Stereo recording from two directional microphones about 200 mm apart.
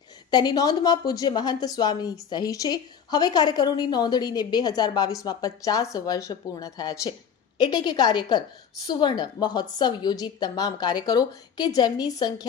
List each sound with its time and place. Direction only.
0.3 s a woman's voice: 20° left (ahead or behind)